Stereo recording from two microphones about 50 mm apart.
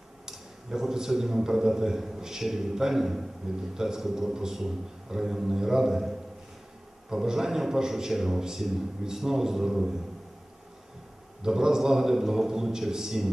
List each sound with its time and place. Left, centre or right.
0.2 s a man's voice: centre
11.4 s a man's voice: centre